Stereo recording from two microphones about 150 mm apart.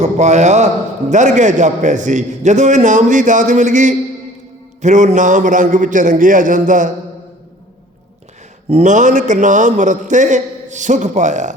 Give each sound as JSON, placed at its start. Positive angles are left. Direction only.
{"t": 0.0, "sound": "a man's voice", "side_deg": -50}
{"t": 8.7, "sound": "a man's voice", "side_deg": -55}